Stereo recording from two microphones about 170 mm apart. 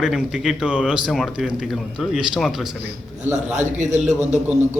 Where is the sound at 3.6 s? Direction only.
45° right (ahead or behind).